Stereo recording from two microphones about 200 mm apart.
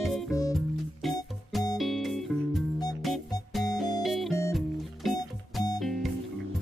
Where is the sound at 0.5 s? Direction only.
Centre (ahead or behind).